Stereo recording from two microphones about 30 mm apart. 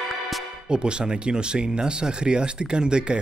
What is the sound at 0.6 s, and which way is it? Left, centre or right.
Speech, right.